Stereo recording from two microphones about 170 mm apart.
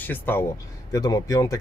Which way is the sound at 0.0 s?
10° left (ahead or behind).